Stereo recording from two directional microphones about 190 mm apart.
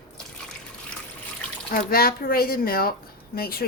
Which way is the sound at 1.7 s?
50° left (ahead or behind).